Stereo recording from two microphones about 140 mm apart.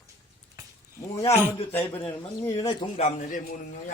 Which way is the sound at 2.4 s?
25° left (ahead or behind).